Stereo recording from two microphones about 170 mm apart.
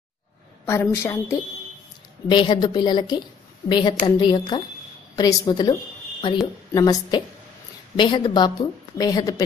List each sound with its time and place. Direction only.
0.7 s a woman's voice: 15° left (ahead or behind)
2.2 s a woman's voice: 30° left (ahead or behind)